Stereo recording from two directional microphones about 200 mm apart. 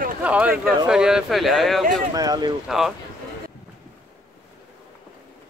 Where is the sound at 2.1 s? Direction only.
20° right (ahead or behind).